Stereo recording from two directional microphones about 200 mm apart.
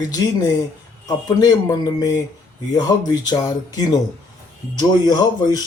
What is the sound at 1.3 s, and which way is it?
Speech, 20° left (ahead or behind).